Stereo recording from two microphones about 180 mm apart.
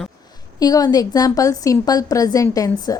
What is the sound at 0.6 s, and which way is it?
A woman's voice, 20° left (ahead or behind).